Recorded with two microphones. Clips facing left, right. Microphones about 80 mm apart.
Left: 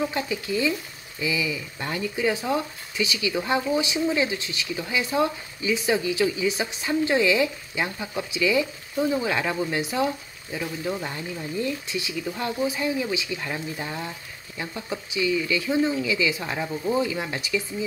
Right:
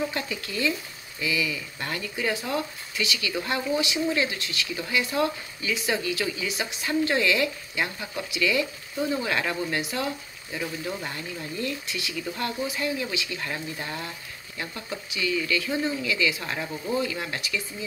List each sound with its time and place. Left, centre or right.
0.0 s speech: centre
10.9 s speech: centre